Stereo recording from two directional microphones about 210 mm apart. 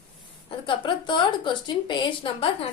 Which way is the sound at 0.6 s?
20° left (ahead or behind).